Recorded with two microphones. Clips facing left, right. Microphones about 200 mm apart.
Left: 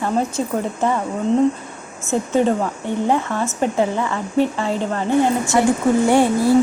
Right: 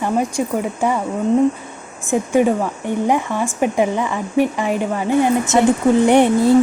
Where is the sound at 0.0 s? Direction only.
15° right (ahead or behind).